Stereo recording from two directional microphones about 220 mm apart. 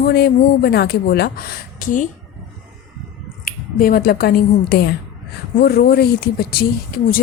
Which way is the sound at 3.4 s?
40° left (ahead or behind).